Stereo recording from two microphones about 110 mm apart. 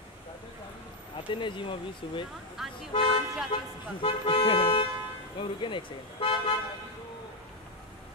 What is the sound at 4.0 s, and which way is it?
Speech, 55° left (ahead or behind).